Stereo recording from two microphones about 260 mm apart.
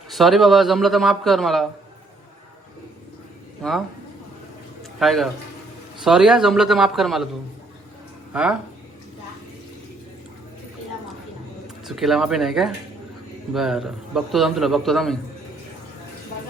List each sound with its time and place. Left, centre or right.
0.1 s a man's voice: centre
3.6 s a man's voice: centre
4.9 s a man's voice: centre
8.3 s speech: centre
11.9 s a man's voice: centre